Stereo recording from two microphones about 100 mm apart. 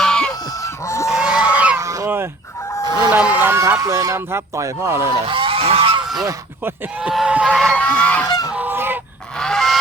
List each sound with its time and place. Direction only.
0.0 s fowl: 5° left (ahead or behind)
0.6 s chicken: 30° left (ahead or behind)
1.1 s goose: 10° right (ahead or behind)
1.8 s goose: 35° right (ahead or behind)
3.1 s fowl: 15° right (ahead or behind)
3.8 s speech: 35° right (ahead or behind)
5.2 s goose: 60° right (ahead or behind)
7.1 s a sound: 5° right (ahead or behind)
7.3 s fowl: 10° right (ahead or behind)
7.6 s goose: 10° left (ahead or behind)
8.3 s goose: 40° left (ahead or behind)
8.5 s goose: 20° right (ahead or behind)
9.4 s goose: 5° left (ahead or behind)